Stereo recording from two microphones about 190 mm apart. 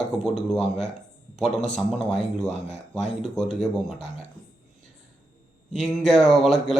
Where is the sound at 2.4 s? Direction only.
35° left (ahead or behind).